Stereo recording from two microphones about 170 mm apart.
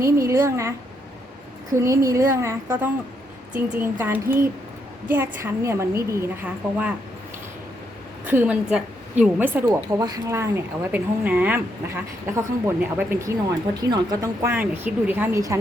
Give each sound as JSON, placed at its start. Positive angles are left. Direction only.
{"t": 0.0, "sound": "speech", "side_deg": -15}
{"t": 1.7, "sound": "speech", "side_deg": -15}
{"t": 8.2, "sound": "speech", "side_deg": -10}